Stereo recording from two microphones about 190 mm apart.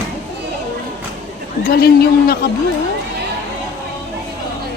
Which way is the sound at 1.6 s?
55° left (ahead or behind).